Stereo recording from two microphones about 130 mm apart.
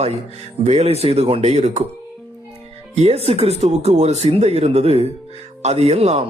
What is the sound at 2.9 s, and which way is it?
Speech, 55° right (ahead or behind).